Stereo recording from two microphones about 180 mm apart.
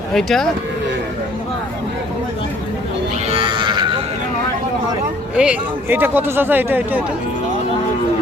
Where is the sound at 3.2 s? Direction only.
35° right (ahead or behind).